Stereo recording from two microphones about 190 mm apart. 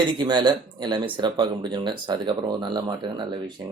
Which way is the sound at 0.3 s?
25° right (ahead or behind).